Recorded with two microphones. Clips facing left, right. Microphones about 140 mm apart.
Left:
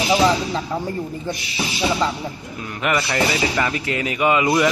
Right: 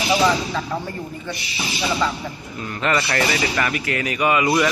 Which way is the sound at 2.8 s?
10° left (ahead or behind).